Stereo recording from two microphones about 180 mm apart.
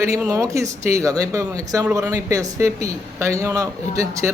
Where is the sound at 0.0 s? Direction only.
15° right (ahead or behind).